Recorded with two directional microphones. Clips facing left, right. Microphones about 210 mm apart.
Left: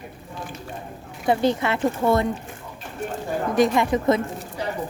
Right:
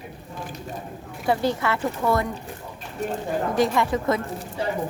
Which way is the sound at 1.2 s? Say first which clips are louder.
Left 2 dB; 20° left (ahead or behind).